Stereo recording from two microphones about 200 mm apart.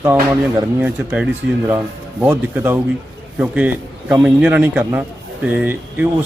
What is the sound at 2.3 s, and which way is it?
Speech, 10° right (ahead or behind).